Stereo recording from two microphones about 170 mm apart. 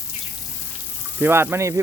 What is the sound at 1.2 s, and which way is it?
Speech, 15° right (ahead or behind).